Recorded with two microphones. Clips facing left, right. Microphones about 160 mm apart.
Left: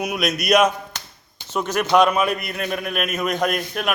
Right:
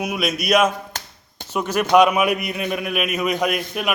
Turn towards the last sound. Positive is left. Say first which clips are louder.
# even
turn(degrees=-5)  # may be behind; listen again after turning